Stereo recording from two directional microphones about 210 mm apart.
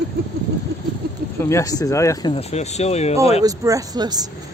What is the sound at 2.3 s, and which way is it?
Speech, 30° left (ahead or behind).